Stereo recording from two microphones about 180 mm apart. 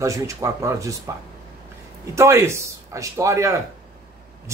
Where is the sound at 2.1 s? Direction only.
15° right (ahead or behind).